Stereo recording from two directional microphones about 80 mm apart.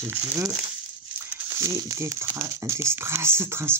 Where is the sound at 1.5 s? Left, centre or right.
Right.